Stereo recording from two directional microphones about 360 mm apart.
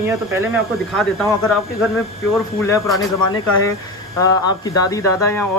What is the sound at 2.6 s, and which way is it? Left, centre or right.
A man's voice, centre.